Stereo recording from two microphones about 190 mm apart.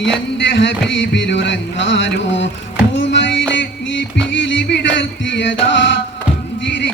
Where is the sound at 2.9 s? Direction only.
70° left (ahead or behind).